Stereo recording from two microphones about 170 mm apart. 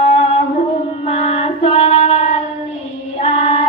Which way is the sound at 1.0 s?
35° left (ahead or behind).